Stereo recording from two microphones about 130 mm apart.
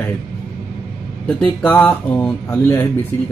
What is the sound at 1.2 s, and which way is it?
Speech, 10° left (ahead or behind).